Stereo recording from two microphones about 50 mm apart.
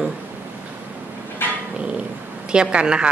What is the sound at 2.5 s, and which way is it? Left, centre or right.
Speech, centre.